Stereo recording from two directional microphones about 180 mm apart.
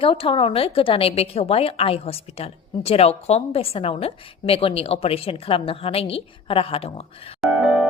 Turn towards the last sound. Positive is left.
turn(degrees=-5)  # may be behind; listen again after turning